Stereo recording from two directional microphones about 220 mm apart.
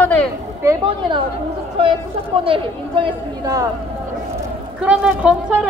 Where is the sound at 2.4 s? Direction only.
25° right (ahead or behind).